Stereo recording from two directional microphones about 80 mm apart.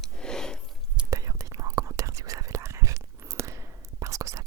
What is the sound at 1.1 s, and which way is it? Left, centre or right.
Whispering, right.